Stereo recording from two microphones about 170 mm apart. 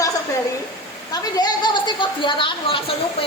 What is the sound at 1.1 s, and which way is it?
A woman's voice, 25° left (ahead or behind).